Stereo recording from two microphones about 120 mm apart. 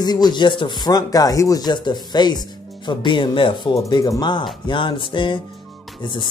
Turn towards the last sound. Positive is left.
turn(degrees=40)  # may be behind; listen again after turning